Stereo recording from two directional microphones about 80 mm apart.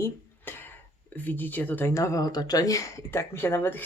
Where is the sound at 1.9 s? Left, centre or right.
Left.